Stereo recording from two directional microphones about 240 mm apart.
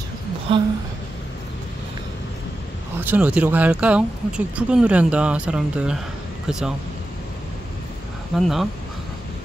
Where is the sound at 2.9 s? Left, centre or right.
Centre.